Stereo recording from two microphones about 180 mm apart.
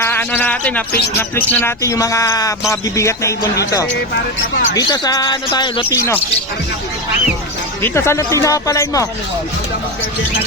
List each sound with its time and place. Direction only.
0.0 s speech: 10° left (ahead or behind)
4.1 s speech: 65° left (ahead or behind)
4.8 s speech: 20° left (ahead or behind)
6.0 s speech: 15° left (ahead or behind)
7.8 s speech: 15° left (ahead or behind)